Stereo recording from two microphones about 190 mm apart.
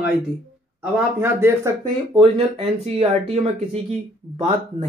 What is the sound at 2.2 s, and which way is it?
Speech, 30° right (ahead or behind).